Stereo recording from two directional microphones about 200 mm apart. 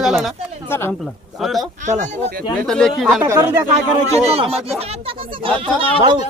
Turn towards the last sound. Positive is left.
turn(degrees=-25)  # may be behind; listen again after turning